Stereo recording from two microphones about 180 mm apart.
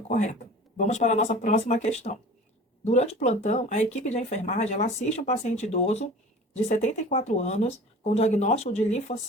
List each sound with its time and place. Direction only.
0.1 s speech: 45° left (ahead or behind)